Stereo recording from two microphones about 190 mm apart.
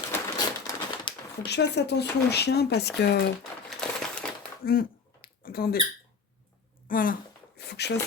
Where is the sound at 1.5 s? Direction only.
60° left (ahead or behind).